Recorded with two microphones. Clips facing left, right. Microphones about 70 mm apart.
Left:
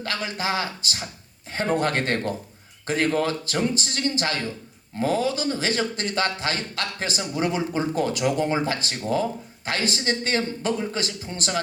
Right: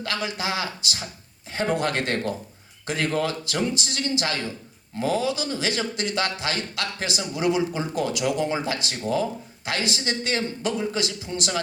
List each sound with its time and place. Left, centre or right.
0.0 s speech: left